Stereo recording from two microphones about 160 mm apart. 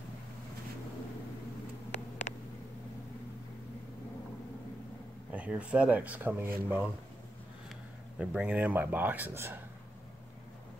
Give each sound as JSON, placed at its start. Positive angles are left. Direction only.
{"t": 1.9, "sound": "a sound", "side_deg": 45}
{"t": 5.3, "sound": "speech", "side_deg": -10}
{"t": 8.2, "sound": "speech", "side_deg": -5}